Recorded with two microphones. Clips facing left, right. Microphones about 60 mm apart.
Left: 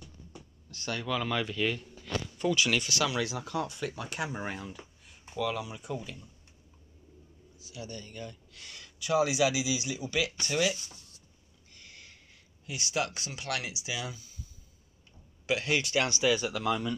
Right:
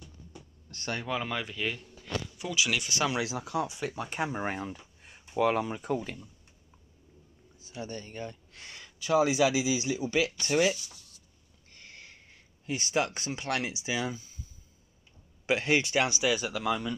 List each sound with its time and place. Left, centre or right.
0.7 s speech: right
1.3 s speech: centre
2.8 s speech: right
3.4 s speech: centre
4.2 s speech: right
7.5 s speech: right
10.8 s speech: left
11.7 s a sound: right
12.6 s speech: right; by 16.3 s centre
16.3 s speech: centre